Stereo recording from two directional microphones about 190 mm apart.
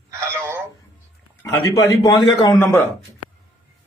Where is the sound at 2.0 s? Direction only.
20° left (ahead or behind).